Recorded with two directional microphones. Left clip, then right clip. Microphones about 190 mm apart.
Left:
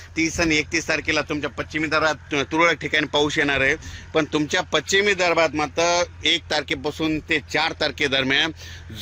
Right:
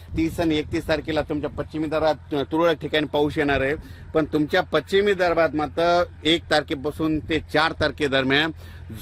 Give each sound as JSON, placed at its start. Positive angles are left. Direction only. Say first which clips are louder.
{"t": 0.2, "sound": "a man's voice", "louder": "left 2 dB", "side_deg": -30}